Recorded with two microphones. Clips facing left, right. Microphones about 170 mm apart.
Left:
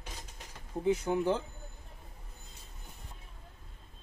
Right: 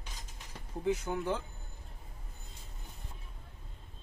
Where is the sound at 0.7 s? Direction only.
20° left (ahead or behind).